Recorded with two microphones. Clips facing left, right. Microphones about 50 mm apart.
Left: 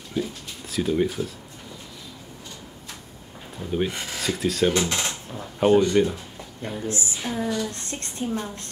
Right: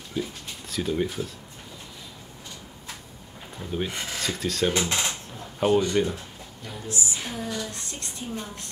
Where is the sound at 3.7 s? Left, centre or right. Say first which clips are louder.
Left 4 dB; centre.